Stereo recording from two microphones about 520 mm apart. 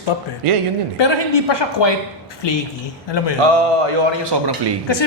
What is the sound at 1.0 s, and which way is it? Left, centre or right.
Speech, left.